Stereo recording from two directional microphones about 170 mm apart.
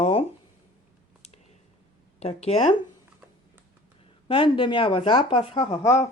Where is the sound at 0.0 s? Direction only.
35° left (ahead or behind).